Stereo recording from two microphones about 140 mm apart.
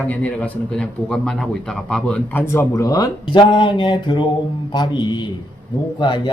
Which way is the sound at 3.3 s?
35° left (ahead or behind).